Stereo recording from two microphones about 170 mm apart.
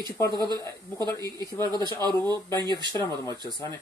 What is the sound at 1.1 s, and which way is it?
Speech, 20° left (ahead or behind).